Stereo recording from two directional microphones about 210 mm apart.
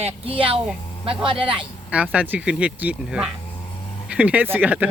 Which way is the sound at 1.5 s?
5° right (ahead or behind).